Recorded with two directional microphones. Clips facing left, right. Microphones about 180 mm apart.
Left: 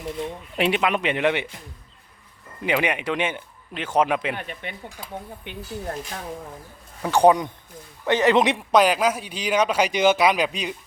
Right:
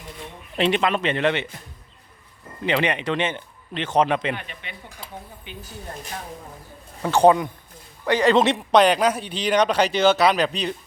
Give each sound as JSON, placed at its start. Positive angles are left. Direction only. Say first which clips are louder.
{"t": 0.5, "sound": "a man's voice", "louder": "right 1 dB", "side_deg": 10}
{"t": 2.6, "sound": "a man's voice", "louder": "right 1 dB", "side_deg": 10}
{"t": 4.4, "sound": "speech", "louder": "left 5 dB", "side_deg": 50}
{"t": 5.5, "sound": "speech", "louder": "left 3 dB", "side_deg": 65}
{"t": 7.0, "sound": "a man's voice", "louder": "right 1 dB", "side_deg": 10}